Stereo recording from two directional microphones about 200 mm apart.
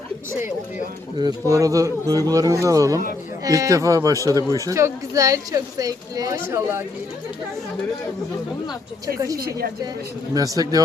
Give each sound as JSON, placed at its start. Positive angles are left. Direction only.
{"t": 1.2, "sound": "speech", "side_deg": -15}
{"t": 10.3, "sound": "speech", "side_deg": -20}